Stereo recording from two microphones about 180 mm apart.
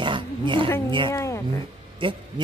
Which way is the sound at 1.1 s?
15° left (ahead or behind).